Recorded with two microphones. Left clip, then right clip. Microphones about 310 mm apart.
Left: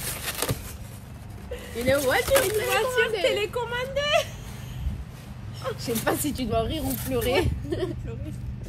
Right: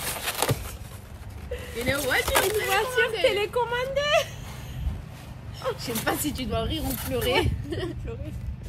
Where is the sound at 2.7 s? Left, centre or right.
Centre.